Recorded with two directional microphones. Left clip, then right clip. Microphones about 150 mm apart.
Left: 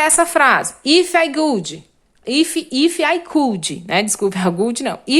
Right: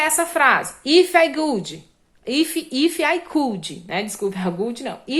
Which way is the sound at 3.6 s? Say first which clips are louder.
Left 8 dB; 45° left (ahead or behind).